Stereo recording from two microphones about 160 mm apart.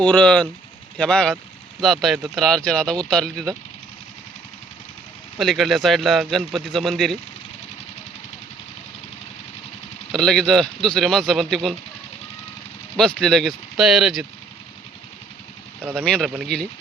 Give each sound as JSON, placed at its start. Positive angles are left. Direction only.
{"t": 0.0, "sound": "speech", "side_deg": 5}
{"t": 5.4, "sound": "speech", "side_deg": 0}
{"t": 10.1, "sound": "speech", "side_deg": 5}
{"t": 13.0, "sound": "speech", "side_deg": 5}
{"t": 15.8, "sound": "speech", "side_deg": -15}
{"t": 16.0, "sound": "speech", "side_deg": 5}